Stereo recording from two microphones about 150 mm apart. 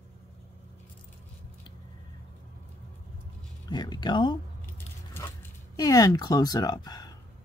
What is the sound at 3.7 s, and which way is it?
Speech, 30° left (ahead or behind).